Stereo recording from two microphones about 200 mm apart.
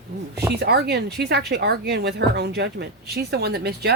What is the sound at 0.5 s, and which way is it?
Speech, 55° right (ahead or behind).